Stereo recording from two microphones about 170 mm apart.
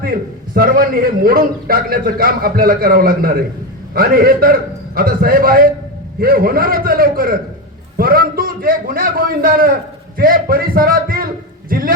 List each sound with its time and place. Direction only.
0.0 s a man's voice: 60° right (ahead or behind)